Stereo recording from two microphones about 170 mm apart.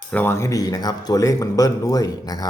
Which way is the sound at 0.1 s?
10° left (ahead or behind).